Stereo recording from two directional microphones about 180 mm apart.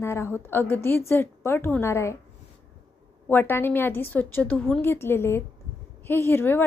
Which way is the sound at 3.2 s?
10° left (ahead or behind).